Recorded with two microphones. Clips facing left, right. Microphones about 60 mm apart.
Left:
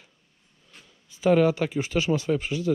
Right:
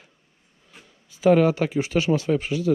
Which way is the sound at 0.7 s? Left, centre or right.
Centre.